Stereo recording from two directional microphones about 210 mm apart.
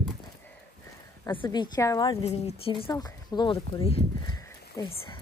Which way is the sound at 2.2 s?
30° left (ahead or behind).